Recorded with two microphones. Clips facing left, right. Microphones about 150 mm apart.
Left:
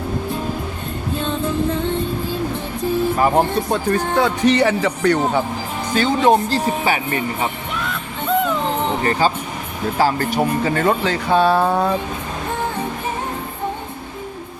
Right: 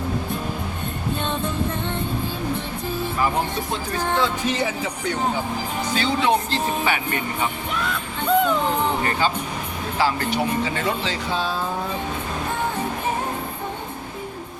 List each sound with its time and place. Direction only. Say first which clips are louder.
3.2 s speech: left 6 dB; 45° left (ahead or behind)
3.7 s speech: left 6 dB; 65° left (ahead or behind)
5.9 s speech: left 6 dB; 45° left (ahead or behind)
7.8 s a sound: even; centre (ahead or behind)
9.0 s speech: left 4 dB; 40° left (ahead or behind); by 11.9 s 70° left (ahead or behind)